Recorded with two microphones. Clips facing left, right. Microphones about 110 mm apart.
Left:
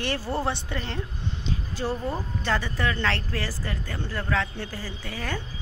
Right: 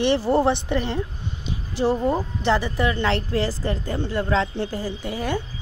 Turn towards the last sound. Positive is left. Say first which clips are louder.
# right 7 dB
turn(degrees=-15)  # may be behind; listen again after turning